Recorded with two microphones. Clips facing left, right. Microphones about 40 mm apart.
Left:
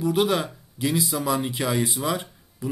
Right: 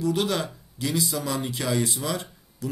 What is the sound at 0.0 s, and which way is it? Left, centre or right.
Speech, centre.